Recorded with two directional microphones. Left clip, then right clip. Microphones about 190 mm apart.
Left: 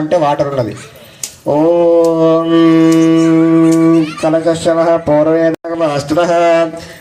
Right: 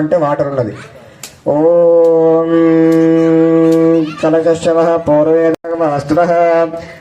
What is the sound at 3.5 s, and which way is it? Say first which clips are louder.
Music: even; 50° right (ahead or behind).